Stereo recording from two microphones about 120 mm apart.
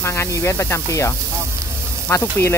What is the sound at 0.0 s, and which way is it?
Speech, 20° left (ahead or behind).